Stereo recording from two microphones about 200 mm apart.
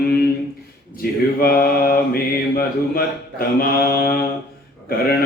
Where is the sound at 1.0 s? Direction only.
50° left (ahead or behind).